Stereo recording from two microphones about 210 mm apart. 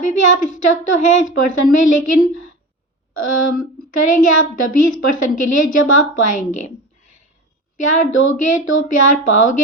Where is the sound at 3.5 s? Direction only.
40° left (ahead or behind).